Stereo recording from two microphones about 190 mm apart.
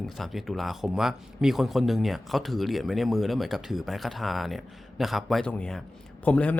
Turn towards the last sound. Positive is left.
turn(degrees=5)  # may be behind; listen again after turning